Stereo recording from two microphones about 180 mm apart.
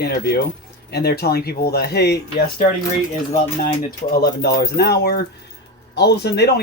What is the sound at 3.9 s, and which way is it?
Speech, 60° left (ahead or behind).